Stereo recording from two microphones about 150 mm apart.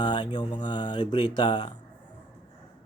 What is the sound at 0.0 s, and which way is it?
Speech, 30° left (ahead or behind).